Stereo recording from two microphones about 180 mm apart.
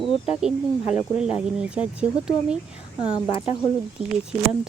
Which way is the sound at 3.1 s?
25° left (ahead or behind).